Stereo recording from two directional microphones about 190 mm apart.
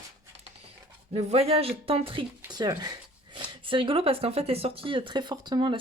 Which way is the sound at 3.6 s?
25° right (ahead or behind).